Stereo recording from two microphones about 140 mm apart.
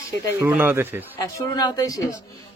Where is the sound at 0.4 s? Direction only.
15° right (ahead or behind).